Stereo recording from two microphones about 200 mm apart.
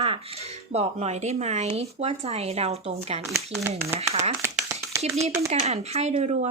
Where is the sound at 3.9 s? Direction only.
30° right (ahead or behind).